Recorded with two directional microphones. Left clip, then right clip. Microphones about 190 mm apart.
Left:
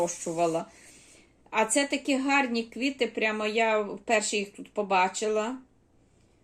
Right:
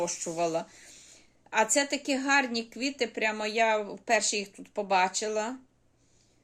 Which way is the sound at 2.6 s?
5° right (ahead or behind).